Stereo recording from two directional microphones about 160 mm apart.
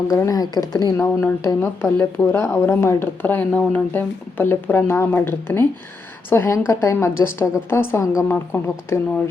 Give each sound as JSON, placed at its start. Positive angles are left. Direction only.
{"t": 0.1, "sound": "a woman's voice", "side_deg": 20}